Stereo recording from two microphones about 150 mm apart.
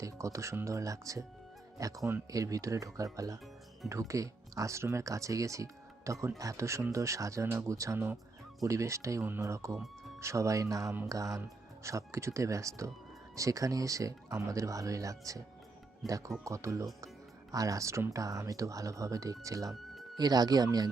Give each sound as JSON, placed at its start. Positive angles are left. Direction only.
{"t": 0.0, "sound": "speech", "side_deg": -20}